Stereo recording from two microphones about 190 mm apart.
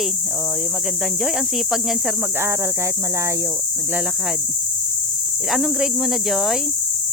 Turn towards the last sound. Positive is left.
turn(degrees=0)  # may be behind; listen again after turning